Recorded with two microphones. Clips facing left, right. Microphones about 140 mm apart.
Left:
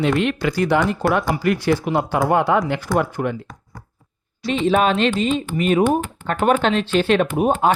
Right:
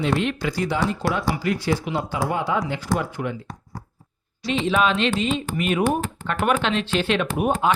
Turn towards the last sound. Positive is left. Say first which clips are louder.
# left 4 dB
turn(degrees=45)  # may be behind; listen again after turning